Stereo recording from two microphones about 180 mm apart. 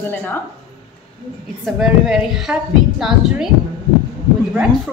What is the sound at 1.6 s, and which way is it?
A woman's voice, centre (ahead or behind).